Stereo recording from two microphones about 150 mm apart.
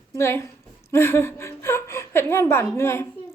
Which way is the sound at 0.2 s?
15° left (ahead or behind).